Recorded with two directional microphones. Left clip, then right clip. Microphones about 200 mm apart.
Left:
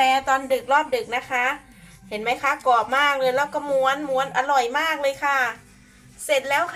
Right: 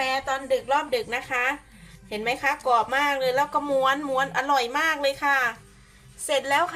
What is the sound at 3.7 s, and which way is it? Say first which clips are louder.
Dishes: left 3 dB; 20° right (ahead or behind).